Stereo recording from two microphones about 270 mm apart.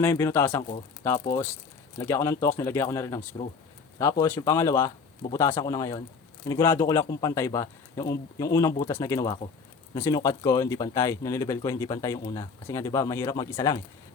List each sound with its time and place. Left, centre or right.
0.0 s speech: centre
3.2 s speech: left
3.9 s speech: centre